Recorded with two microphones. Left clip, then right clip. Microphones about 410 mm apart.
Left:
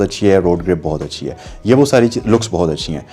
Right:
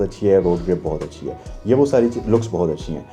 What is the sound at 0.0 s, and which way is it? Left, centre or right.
Speech, left.